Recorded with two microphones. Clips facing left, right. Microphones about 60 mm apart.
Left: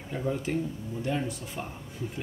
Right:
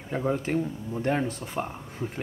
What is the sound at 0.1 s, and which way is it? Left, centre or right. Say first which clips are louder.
Speech: right 3 dB; right.